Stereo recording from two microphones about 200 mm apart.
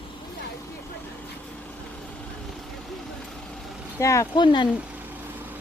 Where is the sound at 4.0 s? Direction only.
15° left (ahead or behind).